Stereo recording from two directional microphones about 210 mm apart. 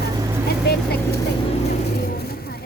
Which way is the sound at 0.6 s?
50° left (ahead or behind).